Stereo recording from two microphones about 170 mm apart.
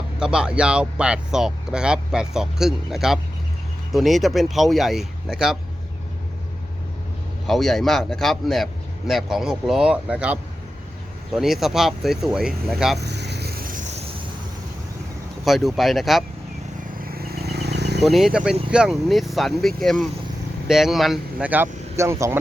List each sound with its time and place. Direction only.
0.2 s speech: 5° right (ahead or behind)
7.4 s speech: centre (ahead or behind)
13.0 s vehicle: 80° right; by 13.8 s 55° right (ahead or behind)
15.4 s speech: centre (ahead or behind)
17.1 s insect: 65° right (ahead or behind); by 18.1 s 80° right
18.1 s speech: centre (ahead or behind)